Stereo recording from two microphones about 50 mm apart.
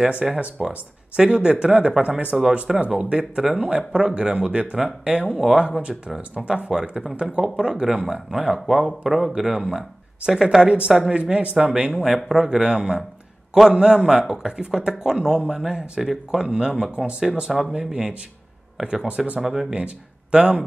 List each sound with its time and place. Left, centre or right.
0.2 s speech: centre
9.0 s speech: centre
10.6 s speech: right
11.9 s speech: centre
19.0 s speech: right
19.4 s speech: centre
19.7 s speech: right